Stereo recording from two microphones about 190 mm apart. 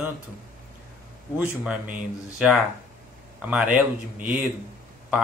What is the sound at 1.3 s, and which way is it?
Speech, 5° right (ahead or behind).